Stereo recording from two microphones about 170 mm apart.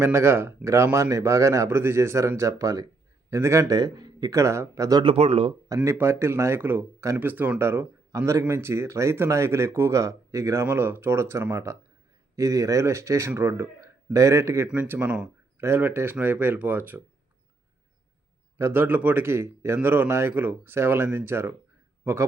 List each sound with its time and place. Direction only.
0.0 s speech: 15° right (ahead or behind)
5.0 s speech: 35° right (ahead or behind)
5.6 s speech: 20° right (ahead or behind)
18.5 s a man's voice: 15° right (ahead or behind)